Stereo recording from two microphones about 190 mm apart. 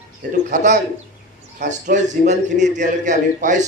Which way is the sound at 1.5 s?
40° right (ahead or behind).